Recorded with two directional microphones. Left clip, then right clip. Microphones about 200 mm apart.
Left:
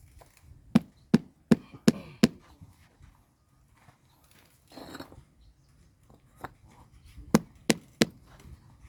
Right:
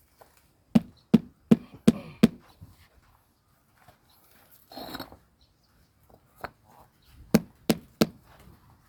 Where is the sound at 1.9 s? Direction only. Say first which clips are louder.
Right 2 dB; 35° left (ahead or behind).